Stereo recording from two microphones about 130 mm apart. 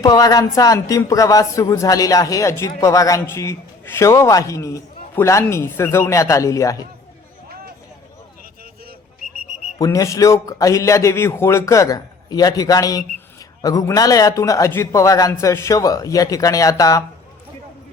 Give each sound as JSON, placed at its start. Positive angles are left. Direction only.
{"t": 0.0, "sound": "speech", "side_deg": 30}
{"t": 9.7, "sound": "speech", "side_deg": 25}